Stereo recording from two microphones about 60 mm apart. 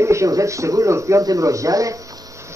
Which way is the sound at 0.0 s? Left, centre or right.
Right.